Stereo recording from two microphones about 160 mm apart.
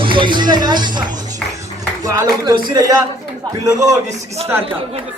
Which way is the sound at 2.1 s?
25° right (ahead or behind).